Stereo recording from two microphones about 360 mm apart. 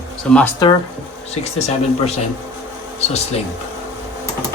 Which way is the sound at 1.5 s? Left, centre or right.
Centre.